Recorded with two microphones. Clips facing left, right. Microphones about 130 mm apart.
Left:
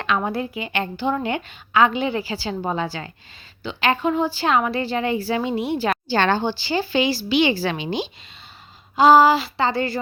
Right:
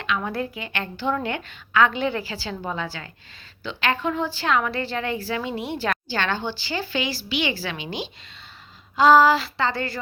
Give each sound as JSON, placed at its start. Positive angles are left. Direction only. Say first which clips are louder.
{"t": 0.0, "sound": "a woman's voice", "louder": "left 4 dB", "side_deg": 40}
{"t": 0.3, "sound": "a woman's voice", "louder": "left 3 dB", "side_deg": 15}
{"t": 2.5, "sound": "speech", "louder": "left 5 dB", "side_deg": 25}
{"t": 3.6, "sound": "a woman's voice", "louder": "left 4 dB", "side_deg": 10}
{"t": 6.1, "sound": "a woman's voice", "louder": "left 7 dB", "side_deg": 35}
{"t": 6.4, "sound": "speech", "louder": "left 6 dB", "side_deg": 20}
{"t": 7.3, "sound": "a woman's voice", "louder": "left 7 dB", "side_deg": 35}
{"t": 9.0, "sound": "a woman's voice", "louder": "left 2 dB", "side_deg": 10}